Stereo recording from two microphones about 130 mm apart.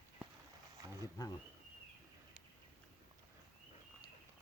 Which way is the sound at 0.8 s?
30° right (ahead or behind).